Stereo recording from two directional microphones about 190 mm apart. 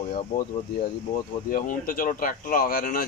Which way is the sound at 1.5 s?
45° left (ahead or behind).